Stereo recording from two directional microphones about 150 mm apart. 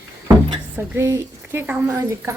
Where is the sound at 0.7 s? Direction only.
20° right (ahead or behind).